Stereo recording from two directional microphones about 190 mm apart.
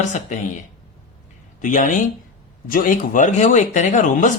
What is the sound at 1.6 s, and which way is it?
Speech, 40° left (ahead or behind).